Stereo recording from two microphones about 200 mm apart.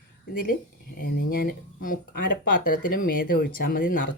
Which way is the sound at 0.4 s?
45° left (ahead or behind).